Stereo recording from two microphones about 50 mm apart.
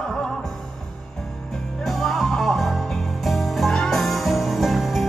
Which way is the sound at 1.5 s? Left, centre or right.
Centre.